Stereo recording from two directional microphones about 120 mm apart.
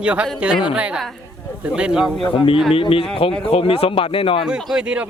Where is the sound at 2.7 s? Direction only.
50° left (ahead or behind).